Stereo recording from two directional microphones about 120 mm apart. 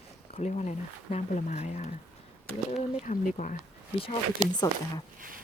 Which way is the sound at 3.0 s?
90° left.